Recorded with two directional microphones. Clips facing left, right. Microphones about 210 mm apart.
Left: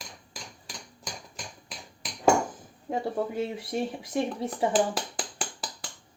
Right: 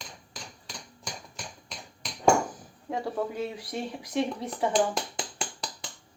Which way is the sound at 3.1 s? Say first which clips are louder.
Left 2 dB; 25° left (ahead or behind).